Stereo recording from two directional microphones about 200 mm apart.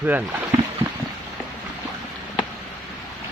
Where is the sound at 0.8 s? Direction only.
25° right (ahead or behind).